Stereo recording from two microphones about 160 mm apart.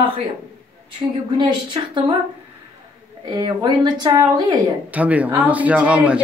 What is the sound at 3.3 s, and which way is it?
Speech, 25° right (ahead or behind).